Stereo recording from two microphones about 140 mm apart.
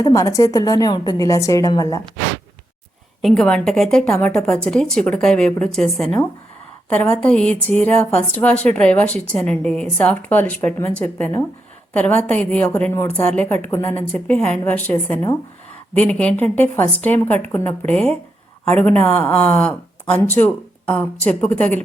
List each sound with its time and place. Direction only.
0.0 s a woman's voice: 25° left (ahead or behind)
3.2 s a woman's voice: 5° left (ahead or behind)
11.9 s a woman's voice: 10° left (ahead or behind)